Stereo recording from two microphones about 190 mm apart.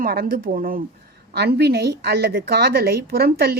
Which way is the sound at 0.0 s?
50° right (ahead or behind).